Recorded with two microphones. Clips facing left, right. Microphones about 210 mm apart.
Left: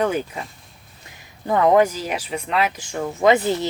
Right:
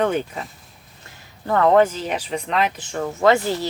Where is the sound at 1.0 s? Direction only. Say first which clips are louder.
Left 1 dB; 15° left (ahead or behind).